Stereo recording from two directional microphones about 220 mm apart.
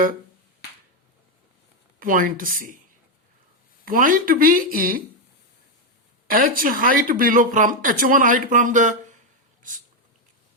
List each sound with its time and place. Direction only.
2.0 s speech: 40° right (ahead or behind)
3.8 s speech: 40° right (ahead or behind)
6.2 s speech: 40° right (ahead or behind)